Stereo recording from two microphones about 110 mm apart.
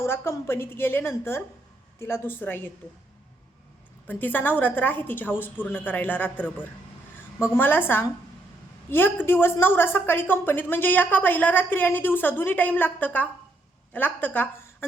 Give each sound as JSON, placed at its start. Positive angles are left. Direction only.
{"t": 0.0, "sound": "a woman's voice", "side_deg": 20}
{"t": 4.0, "sound": "a woman's voice", "side_deg": 15}